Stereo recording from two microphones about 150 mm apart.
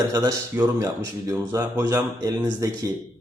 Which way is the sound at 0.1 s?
20° right (ahead or behind).